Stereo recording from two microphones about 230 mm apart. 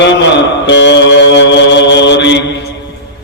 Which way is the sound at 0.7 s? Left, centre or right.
Left.